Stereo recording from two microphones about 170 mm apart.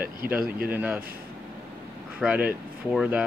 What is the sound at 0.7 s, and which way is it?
Speech, 10° right (ahead or behind).